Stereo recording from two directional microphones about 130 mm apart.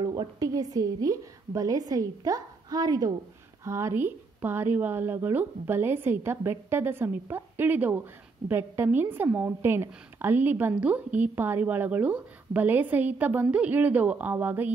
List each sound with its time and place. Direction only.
0.0 s a woman's voice: 30° right (ahead or behind); by 14.7 s 15° right (ahead or behind)